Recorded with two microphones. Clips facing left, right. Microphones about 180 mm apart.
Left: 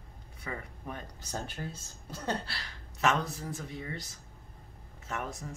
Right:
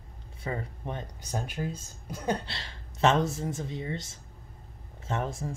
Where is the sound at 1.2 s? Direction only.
15° right (ahead or behind).